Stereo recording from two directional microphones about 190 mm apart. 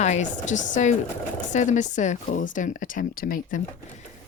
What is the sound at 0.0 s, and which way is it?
Speech, 40° left (ahead or behind).